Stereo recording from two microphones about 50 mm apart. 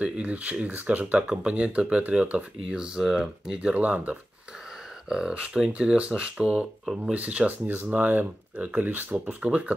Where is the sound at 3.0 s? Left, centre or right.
Centre.